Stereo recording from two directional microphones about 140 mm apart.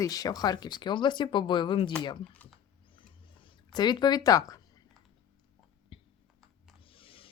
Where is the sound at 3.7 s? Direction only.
30° left (ahead or behind).